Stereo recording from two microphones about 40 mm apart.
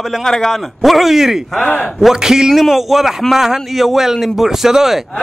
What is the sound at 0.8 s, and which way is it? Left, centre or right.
Speech, centre.